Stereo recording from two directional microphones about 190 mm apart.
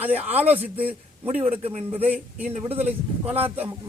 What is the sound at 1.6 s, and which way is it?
A man's voice, 30° right (ahead or behind).